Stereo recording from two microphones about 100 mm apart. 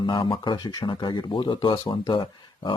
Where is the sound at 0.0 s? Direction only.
55° left (ahead or behind).